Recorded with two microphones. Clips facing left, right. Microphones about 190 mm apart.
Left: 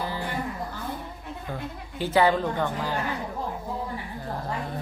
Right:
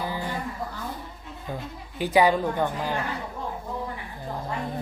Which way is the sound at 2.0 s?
15° right (ahead or behind).